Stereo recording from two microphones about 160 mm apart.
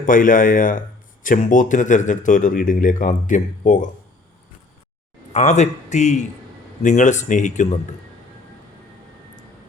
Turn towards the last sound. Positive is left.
turn(degrees=45)  # may be behind; listen again after turning